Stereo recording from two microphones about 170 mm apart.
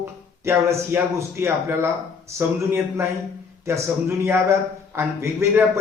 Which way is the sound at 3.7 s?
15° right (ahead or behind).